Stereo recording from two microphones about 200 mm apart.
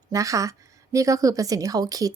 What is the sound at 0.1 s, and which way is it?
Speech, 15° right (ahead or behind).